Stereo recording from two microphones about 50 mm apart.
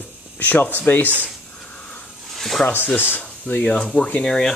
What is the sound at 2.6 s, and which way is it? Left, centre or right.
Speech, left.